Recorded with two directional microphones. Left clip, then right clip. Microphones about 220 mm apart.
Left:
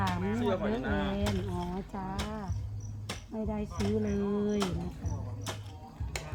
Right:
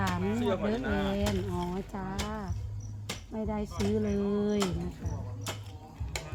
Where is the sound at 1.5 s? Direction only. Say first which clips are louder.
Right 2 dB; 35° right (ahead or behind).